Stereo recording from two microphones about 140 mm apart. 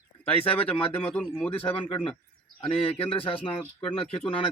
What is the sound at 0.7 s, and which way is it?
Speech, 40° left (ahead or behind).